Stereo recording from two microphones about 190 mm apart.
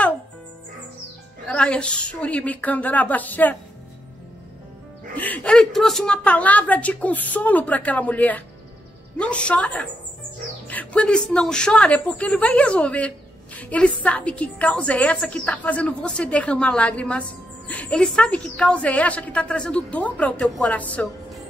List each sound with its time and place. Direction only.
1.5 s a woman's voice: 5° left (ahead or behind)
5.1 s a woman's voice: 10° left (ahead or behind)